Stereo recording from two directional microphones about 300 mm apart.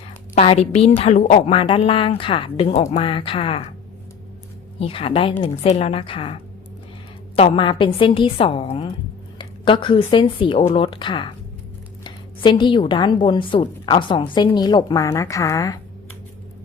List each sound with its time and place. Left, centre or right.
0.3 s a woman's voice: left
4.8 s a woman's voice: centre